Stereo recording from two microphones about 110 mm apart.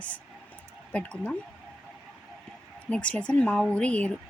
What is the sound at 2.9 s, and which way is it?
Speech, 10° left (ahead or behind).